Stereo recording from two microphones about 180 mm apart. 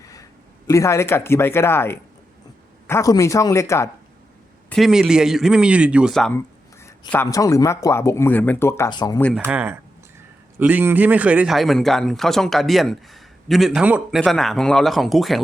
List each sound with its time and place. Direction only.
0.0 s a sound: 20° left (ahead or behind)
0.7 s speech: 15° left (ahead or behind)
4.7 s speech: centre (ahead or behind)
7.1 s speech: 15° left (ahead or behind)
9.4 s speech: 10° right (ahead or behind)